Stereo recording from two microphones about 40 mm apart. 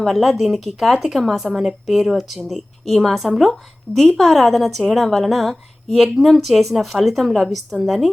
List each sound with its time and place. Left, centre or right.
0.0 s a woman's voice: centre
3.9 s a woman's voice: left
4.2 s a woman's voice: centre